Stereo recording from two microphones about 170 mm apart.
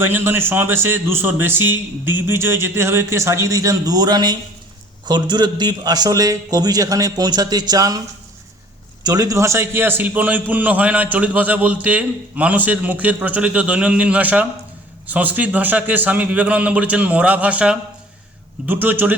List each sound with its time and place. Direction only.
0.0 s a man's voice: 15° right (ahead or behind)
9.0 s a man's voice: 20° right (ahead or behind)